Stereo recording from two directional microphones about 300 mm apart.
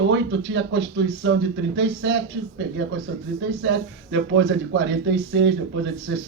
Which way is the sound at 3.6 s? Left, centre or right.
Right.